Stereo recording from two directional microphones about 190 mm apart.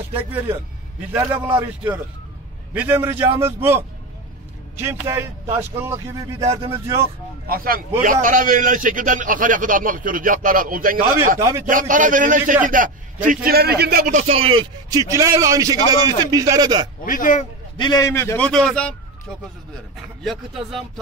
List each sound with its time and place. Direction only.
0.1 s a man's voice: 10° right (ahead or behind)
2.7 s a man's voice: 10° right (ahead or behind)
7.4 s a man's voice: 50° right (ahead or behind)
11.3 s a man's voice: 15° right (ahead or behind)
11.6 s a man's voice: 45° right (ahead or behind); by 16.8 s 20° right (ahead or behind)
17.0 s speech: 45° left (ahead or behind)
17.7 s a man's voice: 20° left (ahead or behind); by 18.9 s 5° left (ahead or behind)
20.2 s speech: centre (ahead or behind)